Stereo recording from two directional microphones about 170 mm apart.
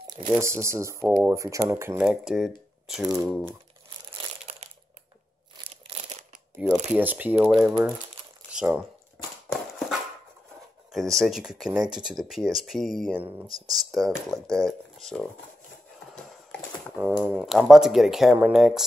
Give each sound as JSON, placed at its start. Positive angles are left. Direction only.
{"t": 0.4, "sound": "speech", "side_deg": -15}
{"t": 2.0, "sound": "speech", "side_deg": 0}
{"t": 4.5, "sound": "a sound", "side_deg": -35}
{"t": 6.6, "sound": "speech", "side_deg": -10}
{"t": 8.5, "sound": "crumpling", "side_deg": -5}
{"t": 9.5, "sound": "horse", "side_deg": 0}
{"t": 10.9, "sound": "speech", "side_deg": 0}
{"t": 17.0, "sound": "speech", "side_deg": -5}